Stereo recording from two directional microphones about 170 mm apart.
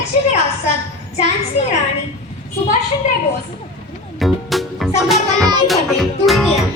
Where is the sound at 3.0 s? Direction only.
45° left (ahead or behind).